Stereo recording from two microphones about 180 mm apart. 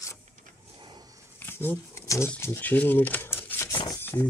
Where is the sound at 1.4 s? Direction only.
10° left (ahead or behind).